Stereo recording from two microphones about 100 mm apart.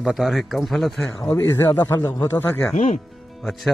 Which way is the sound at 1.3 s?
30° left (ahead or behind).